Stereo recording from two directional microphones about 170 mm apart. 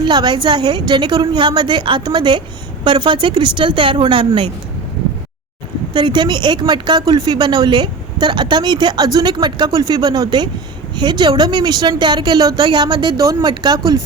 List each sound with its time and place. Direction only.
0.0 s speech: 25° right (ahead or behind)
5.9 s speech: 25° right (ahead or behind)